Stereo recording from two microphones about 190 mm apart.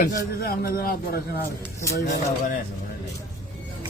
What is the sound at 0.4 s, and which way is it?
Speech, 50° left (ahead or behind).